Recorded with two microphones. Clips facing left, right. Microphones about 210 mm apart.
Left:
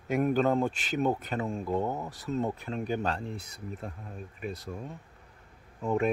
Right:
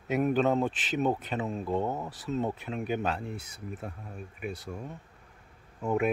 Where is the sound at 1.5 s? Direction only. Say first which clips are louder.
Even; 10° left (ahead or behind).